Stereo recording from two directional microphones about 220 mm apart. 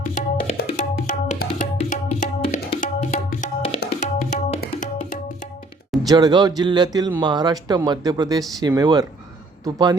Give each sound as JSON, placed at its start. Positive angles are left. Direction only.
{"t": 0.0, "sound": "music", "side_deg": 35}
{"t": 6.1, "sound": "speech", "side_deg": -20}